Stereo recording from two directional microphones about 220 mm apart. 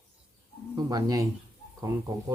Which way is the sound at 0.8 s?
15° right (ahead or behind).